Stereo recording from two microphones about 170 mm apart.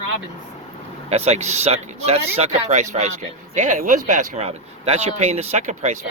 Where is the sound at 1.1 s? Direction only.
40° right (ahead or behind).